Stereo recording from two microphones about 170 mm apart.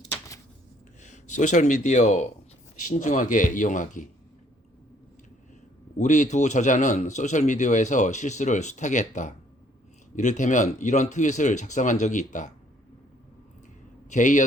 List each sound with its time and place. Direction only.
1.0 s a man's voice: 45° left (ahead or behind)
6.0 s a man's voice: 45° left (ahead or behind)
14.1 s a man's voice: 45° left (ahead or behind)